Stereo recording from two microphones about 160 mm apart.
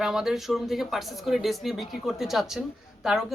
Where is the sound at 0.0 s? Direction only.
5° right (ahead or behind).